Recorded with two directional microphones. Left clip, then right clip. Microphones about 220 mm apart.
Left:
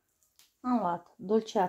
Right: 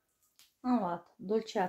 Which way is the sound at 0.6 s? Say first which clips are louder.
Left 3 dB; 20° left (ahead or behind).